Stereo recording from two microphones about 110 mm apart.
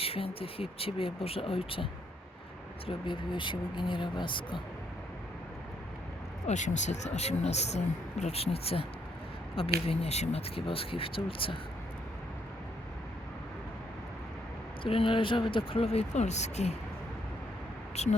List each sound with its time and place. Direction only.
0.0 s speech: 60° left (ahead or behind)
6.5 s speech: 90° left; by 11.5 s 55° left (ahead or behind)
14.8 s speech: 55° left (ahead or behind); by 16.7 s 90° left
17.9 s speech: 90° left